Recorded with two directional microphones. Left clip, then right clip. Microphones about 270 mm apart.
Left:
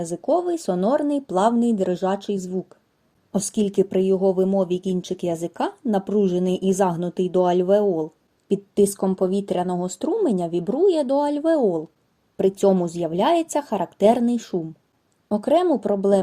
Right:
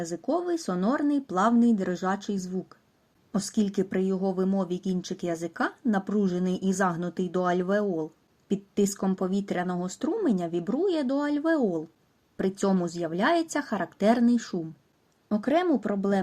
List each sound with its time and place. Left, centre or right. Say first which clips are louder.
0.0 s speech: left 7 dB; centre